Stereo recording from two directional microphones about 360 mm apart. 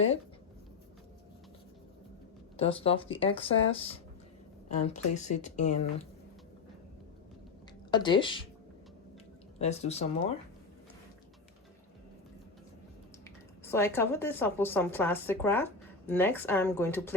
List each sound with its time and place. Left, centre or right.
2.6 s speech: centre
7.9 s speech: centre
9.6 s speech: centre
13.2 s a woman's voice: centre